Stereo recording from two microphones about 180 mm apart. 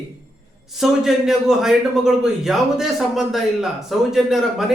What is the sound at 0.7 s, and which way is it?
A man's voice, centre (ahead or behind).